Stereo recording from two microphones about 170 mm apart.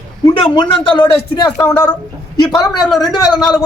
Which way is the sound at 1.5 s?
10° left (ahead or behind).